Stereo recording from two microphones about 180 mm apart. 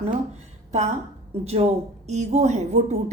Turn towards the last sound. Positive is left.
turn(degrees=-40)  # may be behind; listen again after turning